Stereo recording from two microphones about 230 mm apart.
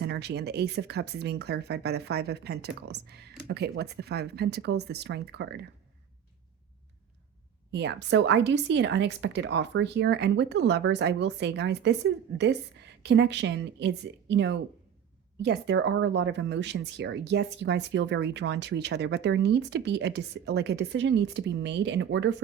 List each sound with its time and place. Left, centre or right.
0.0 s speech: right
7.7 s speech: right